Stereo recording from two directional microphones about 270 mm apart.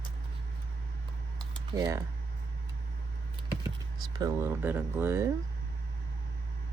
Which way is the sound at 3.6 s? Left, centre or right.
Centre.